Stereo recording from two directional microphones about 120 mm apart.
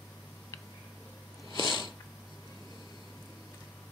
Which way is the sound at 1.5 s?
40° left (ahead or behind).